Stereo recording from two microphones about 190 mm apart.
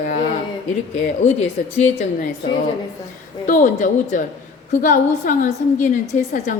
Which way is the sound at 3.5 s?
40° left (ahead or behind).